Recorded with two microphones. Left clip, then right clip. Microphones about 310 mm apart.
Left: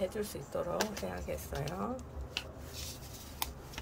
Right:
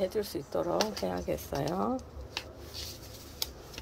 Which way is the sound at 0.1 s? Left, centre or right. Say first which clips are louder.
Right 5 dB; centre.